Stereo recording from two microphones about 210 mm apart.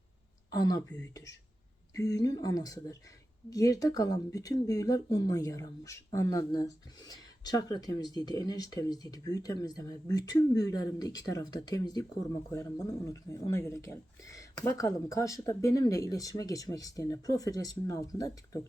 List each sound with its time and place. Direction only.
0.5 s speech: 20° left (ahead or behind)